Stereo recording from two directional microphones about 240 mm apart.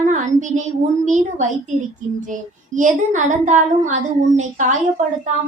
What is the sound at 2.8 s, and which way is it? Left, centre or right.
A child's voice, right.